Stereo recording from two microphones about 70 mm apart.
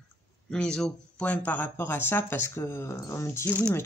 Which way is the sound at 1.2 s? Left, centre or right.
Left.